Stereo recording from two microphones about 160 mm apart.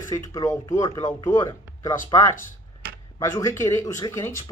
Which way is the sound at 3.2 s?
20° left (ahead or behind).